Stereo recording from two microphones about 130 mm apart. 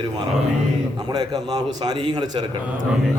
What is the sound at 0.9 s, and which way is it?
A man's voice, 30° right (ahead or behind).